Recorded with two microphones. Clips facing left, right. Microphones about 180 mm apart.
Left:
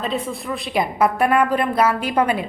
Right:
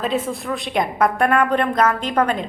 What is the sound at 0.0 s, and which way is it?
A woman's voice, centre (ahead or behind).